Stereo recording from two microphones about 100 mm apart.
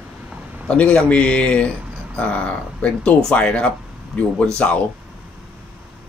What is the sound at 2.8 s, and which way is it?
Speech, 10° left (ahead or behind).